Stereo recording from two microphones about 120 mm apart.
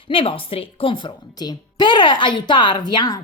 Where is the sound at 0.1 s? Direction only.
45° left (ahead or behind).